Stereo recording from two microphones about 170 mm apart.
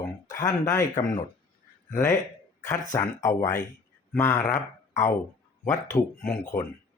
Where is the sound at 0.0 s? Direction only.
20° left (ahead or behind).